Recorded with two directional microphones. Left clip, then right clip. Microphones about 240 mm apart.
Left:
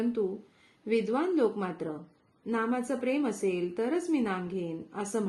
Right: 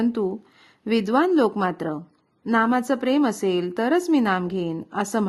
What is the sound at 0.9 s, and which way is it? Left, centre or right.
Speech, right.